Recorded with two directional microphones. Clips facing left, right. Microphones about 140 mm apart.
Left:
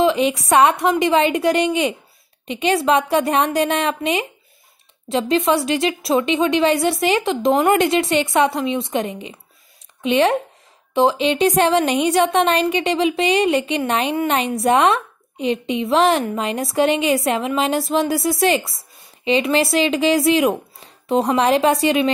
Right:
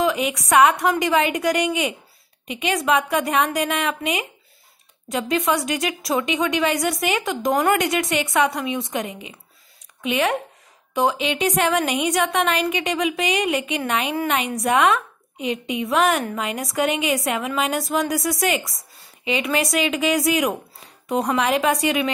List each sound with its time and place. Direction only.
0.0 s a woman's voice: 30° left (ahead or behind)